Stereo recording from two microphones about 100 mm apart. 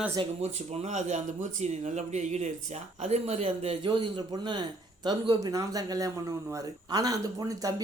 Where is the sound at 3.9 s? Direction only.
50° right (ahead or behind).